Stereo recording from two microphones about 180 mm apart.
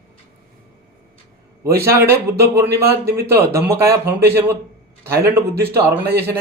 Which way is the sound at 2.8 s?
60° right (ahead or behind).